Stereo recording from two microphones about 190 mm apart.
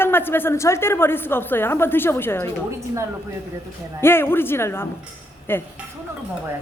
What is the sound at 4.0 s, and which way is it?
A woman's voice, 10° left (ahead or behind).